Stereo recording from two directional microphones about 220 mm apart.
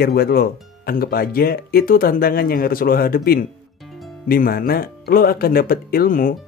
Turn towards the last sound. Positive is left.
turn(degrees=40)  # may be behind; listen again after turning